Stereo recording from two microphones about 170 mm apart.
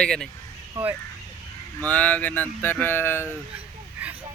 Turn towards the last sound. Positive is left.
turn(degrees=-10)  # may be behind; listen again after turning